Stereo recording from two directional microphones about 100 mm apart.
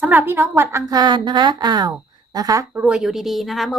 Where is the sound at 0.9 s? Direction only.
45° right (ahead or behind).